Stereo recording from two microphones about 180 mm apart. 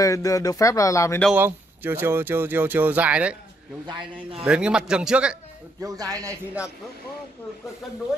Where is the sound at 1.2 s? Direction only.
10° right (ahead or behind).